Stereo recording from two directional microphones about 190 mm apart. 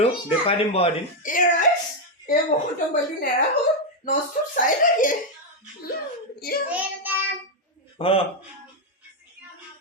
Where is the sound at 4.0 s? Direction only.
45° left (ahead or behind).